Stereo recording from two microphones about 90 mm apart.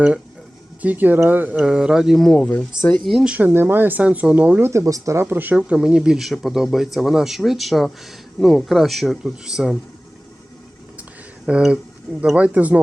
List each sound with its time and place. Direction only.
0.8 s speech: 20° right (ahead or behind)
1.6 s speech: 10° right (ahead or behind); by 3.1 s 15° left (ahead or behind)
3.1 s speech: centre (ahead or behind)
3.3 s speech: 20° right (ahead or behind)
4.7 s speech: 35° right (ahead or behind)
5.2 s speech: 20° right (ahead or behind)
11.4 s speech: 10° right (ahead or behind)